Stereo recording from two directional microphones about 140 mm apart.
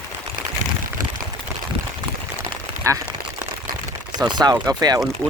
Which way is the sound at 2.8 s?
25° right (ahead or behind).